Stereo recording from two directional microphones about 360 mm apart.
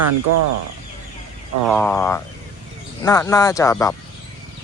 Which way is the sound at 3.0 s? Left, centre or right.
Centre.